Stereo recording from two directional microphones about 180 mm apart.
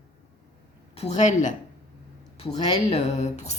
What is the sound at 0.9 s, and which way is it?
Speech, 40° left (ahead or behind).